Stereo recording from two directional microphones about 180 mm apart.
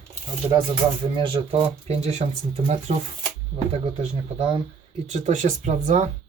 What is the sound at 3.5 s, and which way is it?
Speech, 30° right (ahead or behind).